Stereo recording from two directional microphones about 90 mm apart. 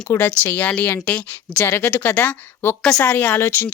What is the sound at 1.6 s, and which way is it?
Speech, 30° left (ahead or behind).